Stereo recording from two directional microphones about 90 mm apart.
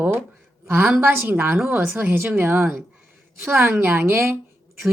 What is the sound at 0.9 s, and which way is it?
A woman's voice, 25° right (ahead or behind).